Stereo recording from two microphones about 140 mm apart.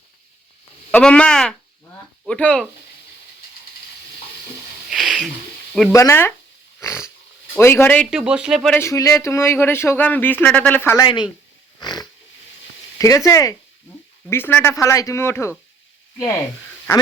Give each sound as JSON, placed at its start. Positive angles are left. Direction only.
{"t": 0.9, "sound": "speech", "side_deg": 5}
{"t": 4.9, "sound": "a sound", "side_deg": -5}
{"t": 5.9, "sound": "speech", "side_deg": 20}
{"t": 6.7, "sound": "dog", "side_deg": 20}
{"t": 7.6, "sound": "speech", "side_deg": 15}
{"t": 8.1, "sound": "speech", "side_deg": -5}
{"t": 8.7, "sound": "speech", "side_deg": 20}
{"t": 10.9, "sound": "speech", "side_deg": 30}